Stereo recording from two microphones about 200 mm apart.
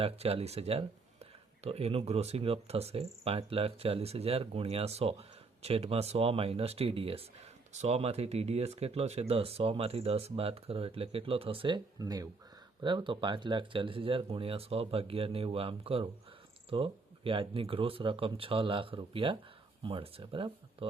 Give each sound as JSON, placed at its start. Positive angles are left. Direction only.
{"t": 0.0, "sound": "speech", "side_deg": -30}